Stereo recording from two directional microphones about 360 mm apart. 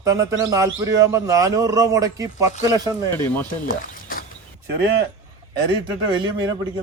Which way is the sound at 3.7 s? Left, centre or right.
Left.